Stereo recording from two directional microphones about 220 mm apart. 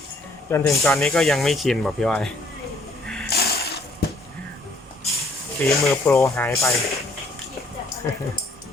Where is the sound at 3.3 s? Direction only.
45° left (ahead or behind).